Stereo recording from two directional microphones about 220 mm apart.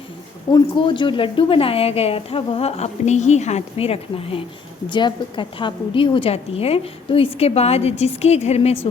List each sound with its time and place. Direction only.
0.5 s a woman's voice: 20° left (ahead or behind)